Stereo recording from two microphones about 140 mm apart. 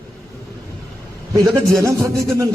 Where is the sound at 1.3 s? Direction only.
25° right (ahead or behind).